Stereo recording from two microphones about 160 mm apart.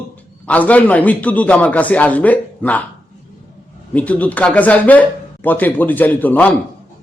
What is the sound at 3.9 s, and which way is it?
A man's voice, 10° left (ahead or behind).